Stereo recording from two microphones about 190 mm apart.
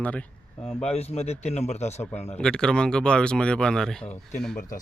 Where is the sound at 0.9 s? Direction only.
35° left (ahead or behind).